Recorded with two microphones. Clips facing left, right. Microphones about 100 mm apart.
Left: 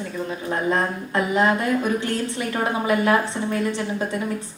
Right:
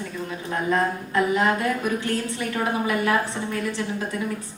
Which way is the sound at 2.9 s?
30° left (ahead or behind).